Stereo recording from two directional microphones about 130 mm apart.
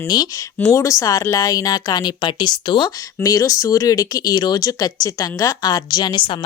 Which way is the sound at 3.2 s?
25° left (ahead or behind).